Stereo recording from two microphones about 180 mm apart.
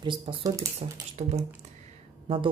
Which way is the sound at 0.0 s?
25° right (ahead or behind).